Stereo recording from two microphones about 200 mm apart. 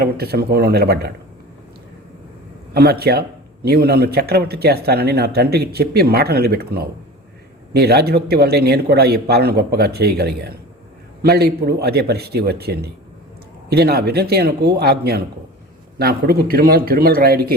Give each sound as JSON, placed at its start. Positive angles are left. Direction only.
{"t": 0.0, "sound": "a man's voice", "side_deg": -50}
{"t": 2.7, "sound": "a man's voice", "side_deg": -50}